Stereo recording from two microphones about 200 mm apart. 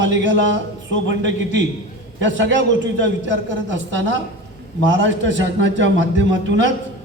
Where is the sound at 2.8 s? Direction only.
65° right (ahead or behind).